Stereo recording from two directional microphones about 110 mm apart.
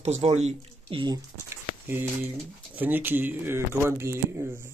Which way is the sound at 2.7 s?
15° right (ahead or behind).